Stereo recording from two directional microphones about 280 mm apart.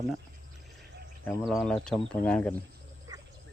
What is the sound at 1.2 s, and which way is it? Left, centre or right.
Speech, centre.